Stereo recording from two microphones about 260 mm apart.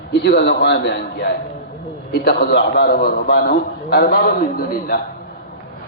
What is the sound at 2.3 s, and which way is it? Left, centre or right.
A man's voice, left.